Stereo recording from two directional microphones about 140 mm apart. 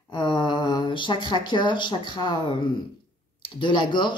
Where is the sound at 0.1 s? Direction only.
35° left (ahead or behind).